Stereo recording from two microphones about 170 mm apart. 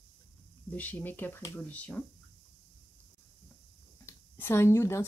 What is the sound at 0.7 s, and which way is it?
Speech, 10° left (ahead or behind).